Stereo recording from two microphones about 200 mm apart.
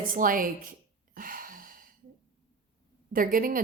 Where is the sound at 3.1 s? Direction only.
45° right (ahead or behind).